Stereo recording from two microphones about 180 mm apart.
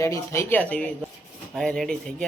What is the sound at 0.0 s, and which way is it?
A man's voice, 15° left (ahead or behind).